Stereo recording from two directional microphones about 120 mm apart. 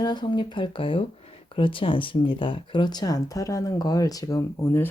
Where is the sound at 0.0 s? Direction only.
40° left (ahead or behind).